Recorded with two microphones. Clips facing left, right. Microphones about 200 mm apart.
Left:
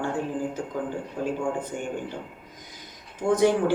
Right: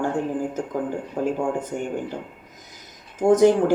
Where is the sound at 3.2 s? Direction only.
45° right (ahead or behind).